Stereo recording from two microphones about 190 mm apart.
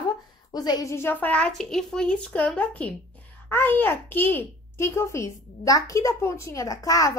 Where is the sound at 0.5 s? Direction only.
20° left (ahead or behind).